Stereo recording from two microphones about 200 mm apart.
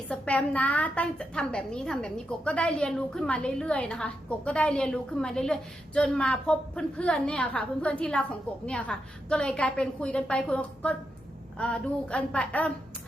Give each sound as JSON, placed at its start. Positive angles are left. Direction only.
{"t": 0.1, "sound": "a woman's voice", "side_deg": 5}